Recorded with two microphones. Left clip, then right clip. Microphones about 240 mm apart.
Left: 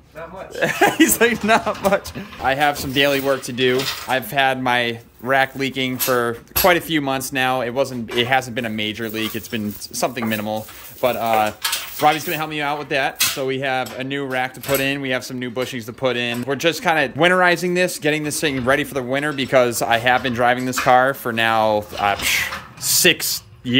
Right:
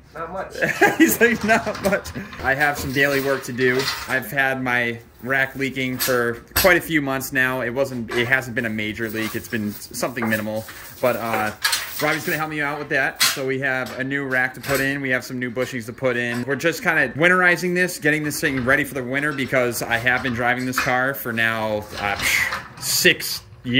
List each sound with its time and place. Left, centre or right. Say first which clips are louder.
0.6 s speech: left 1 dB; centre